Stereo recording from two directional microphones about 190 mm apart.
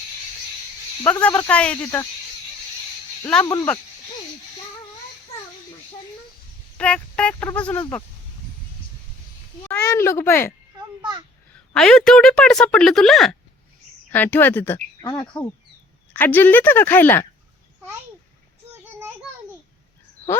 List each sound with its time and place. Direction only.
1.0 s speech: 5° left (ahead or behind)
3.4 s speech: 20° left (ahead or behind)
6.7 s speech: 5° left (ahead or behind)
9.6 s speech: 15° left (ahead or behind)
11.5 s a woman's voice: 5° left (ahead or behind)
15.0 s speech: 20° left (ahead or behind)
16.1 s speech: 10° left (ahead or behind)
18.7 s child singing: 10° right (ahead or behind)